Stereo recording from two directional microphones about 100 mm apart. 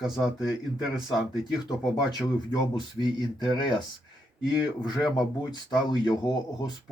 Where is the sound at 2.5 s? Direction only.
45° left (ahead or behind).